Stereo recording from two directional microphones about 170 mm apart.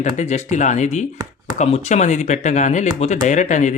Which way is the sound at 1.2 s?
25° right (ahead or behind).